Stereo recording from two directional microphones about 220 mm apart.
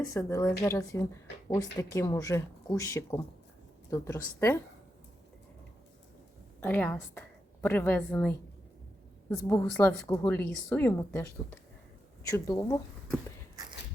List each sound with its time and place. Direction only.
0.1 s speech: 10° left (ahead or behind)
6.6 s a woman's voice: 10° left (ahead or behind)
12.5 s speech: 15° left (ahead or behind)